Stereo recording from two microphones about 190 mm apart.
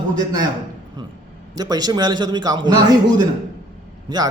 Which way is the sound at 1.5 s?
20° right (ahead or behind).